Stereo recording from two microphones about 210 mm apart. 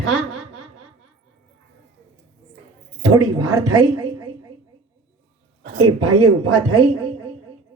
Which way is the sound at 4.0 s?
15° right (ahead or behind).